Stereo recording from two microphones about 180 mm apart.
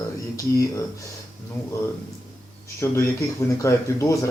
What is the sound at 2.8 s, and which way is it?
Speech, 15° left (ahead or behind).